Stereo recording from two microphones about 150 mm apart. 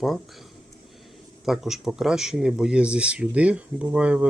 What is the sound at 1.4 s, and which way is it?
Speech, centre (ahead or behind).